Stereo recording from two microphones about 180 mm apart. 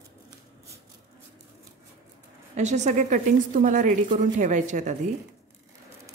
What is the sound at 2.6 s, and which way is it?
A woman's voice, 40° right (ahead or behind).